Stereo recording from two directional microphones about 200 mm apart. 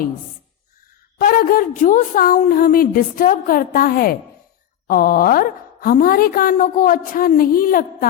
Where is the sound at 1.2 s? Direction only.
45° left (ahead or behind).